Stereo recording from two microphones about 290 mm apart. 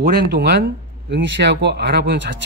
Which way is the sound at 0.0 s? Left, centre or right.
Right.